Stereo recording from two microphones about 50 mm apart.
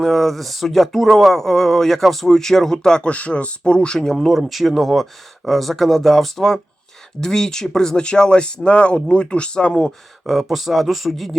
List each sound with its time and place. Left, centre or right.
0.0 s speech: centre
3.1 s speech: left; by 4.3 s centre
4.3 s speech: centre; by 9.9 s left
10.2 s speech: centre